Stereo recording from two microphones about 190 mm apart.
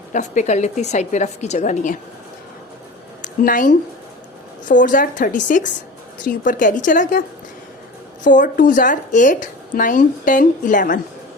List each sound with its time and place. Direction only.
0.1 s a woman's voice: 40° left (ahead or behind)
3.2 s speech: 45° left (ahead or behind)